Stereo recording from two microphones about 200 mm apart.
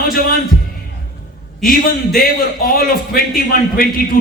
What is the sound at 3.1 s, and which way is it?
A man's voice, 45° left (ahead or behind).